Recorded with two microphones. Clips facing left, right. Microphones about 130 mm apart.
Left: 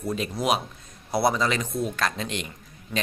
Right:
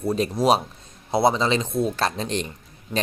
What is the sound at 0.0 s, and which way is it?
Speech, 30° right (ahead or behind).